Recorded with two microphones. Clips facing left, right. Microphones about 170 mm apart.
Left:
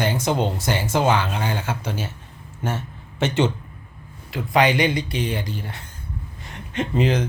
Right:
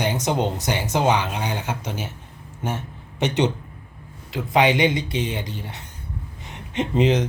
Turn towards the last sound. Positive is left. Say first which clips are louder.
# right 2 dB
turn(degrees=-20)  # may be behind; listen again after turning